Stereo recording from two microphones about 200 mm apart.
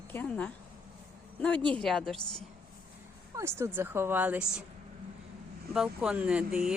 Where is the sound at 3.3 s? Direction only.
15° right (ahead or behind).